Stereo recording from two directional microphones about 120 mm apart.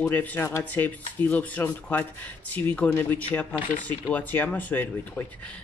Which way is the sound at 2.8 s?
15° left (ahead or behind).